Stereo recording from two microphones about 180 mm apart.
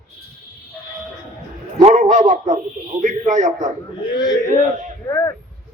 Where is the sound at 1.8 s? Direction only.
40° right (ahead or behind).